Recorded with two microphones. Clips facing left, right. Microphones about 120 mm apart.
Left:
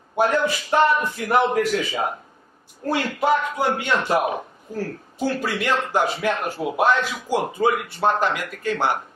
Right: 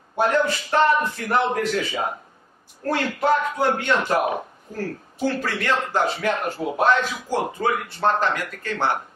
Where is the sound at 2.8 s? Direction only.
10° left (ahead or behind).